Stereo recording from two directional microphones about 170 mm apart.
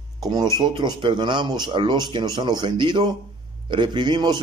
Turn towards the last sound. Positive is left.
turn(degrees=-25)  # may be behind; listen again after turning